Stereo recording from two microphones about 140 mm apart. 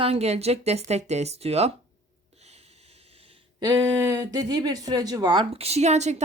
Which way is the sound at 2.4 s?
50° right (ahead or behind).